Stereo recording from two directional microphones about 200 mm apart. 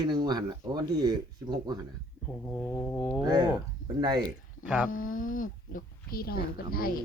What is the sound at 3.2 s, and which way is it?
Speech, 20° right (ahead or behind).